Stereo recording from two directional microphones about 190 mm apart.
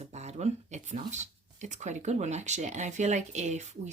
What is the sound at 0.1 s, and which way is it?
Speech, 35° right (ahead or behind).